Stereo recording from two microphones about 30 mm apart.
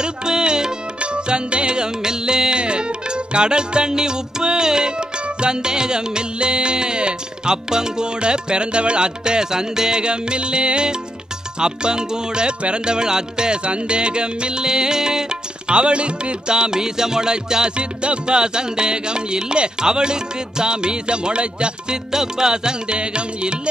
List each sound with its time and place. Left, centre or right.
0.0 s music: right
13.7 s music: right
17.7 s music: right
22.1 s music: right